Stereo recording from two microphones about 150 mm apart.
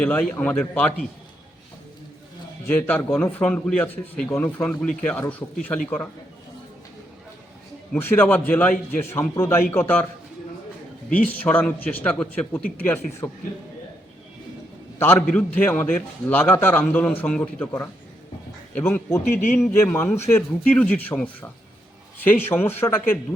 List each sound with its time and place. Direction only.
0.0 s a man's voice: 10° left (ahead or behind)
2.6 s a man's voice: 10° left (ahead or behind)
7.9 s a man's voice: 15° left (ahead or behind)
11.1 s a man's voice: 10° left (ahead or behind)
14.9 s a man's voice: 15° left (ahead or behind)